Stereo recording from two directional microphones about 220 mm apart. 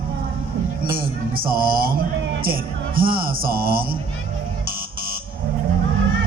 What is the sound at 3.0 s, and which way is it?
Speech, 40° right (ahead or behind).